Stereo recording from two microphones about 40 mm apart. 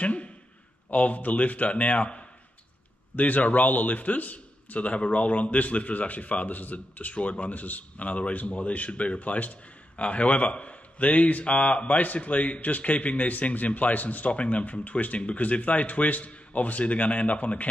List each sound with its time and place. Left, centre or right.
0.0 s a man's voice: left